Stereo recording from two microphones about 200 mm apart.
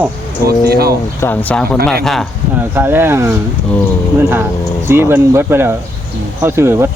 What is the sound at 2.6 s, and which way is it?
Speech, 10° right (ahead or behind).